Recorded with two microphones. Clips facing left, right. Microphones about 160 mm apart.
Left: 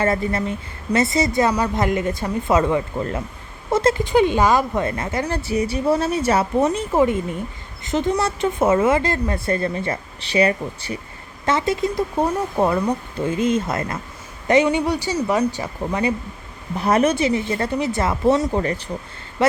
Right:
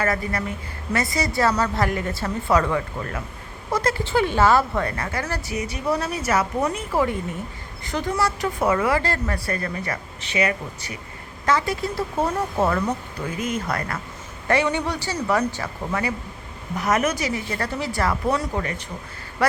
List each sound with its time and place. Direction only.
0.0 s a woman's voice: 25° left (ahead or behind)
3.7 s a sound: 25° left (ahead or behind)
4.0 s a woman's voice: 20° left (ahead or behind)
13.1 s a woman's voice: 25° left (ahead or behind)
16.7 s a woman's voice: 30° left (ahead or behind)
19.4 s a woman's voice: 20° left (ahead or behind)